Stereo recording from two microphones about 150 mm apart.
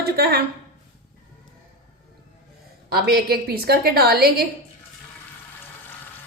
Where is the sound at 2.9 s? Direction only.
90° right.